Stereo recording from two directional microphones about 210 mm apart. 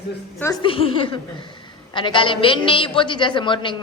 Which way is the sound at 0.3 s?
10° left (ahead or behind).